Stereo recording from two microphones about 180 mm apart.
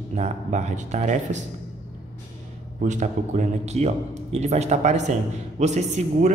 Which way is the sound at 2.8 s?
40° right (ahead or behind).